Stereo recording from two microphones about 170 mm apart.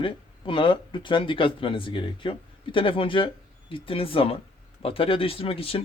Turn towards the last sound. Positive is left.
turn(degrees=35)  # may be behind; listen again after turning